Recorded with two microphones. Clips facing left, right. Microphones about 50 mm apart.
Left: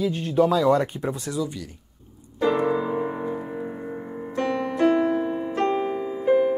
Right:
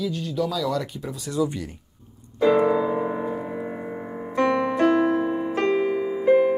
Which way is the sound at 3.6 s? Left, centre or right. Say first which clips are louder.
Right 1 dB; right.